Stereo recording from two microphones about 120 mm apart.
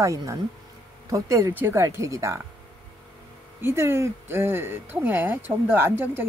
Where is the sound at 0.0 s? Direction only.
25° right (ahead or behind).